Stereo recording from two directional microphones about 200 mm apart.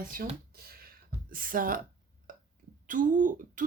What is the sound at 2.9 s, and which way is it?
Speech, 40° right (ahead or behind).